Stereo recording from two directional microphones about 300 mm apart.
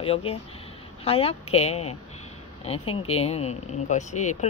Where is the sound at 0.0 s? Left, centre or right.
Centre.